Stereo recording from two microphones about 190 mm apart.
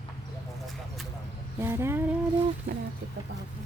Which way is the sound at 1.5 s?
15° right (ahead or behind).